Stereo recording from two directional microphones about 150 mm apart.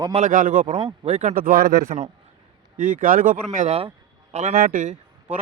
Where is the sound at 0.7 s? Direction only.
35° right (ahead or behind).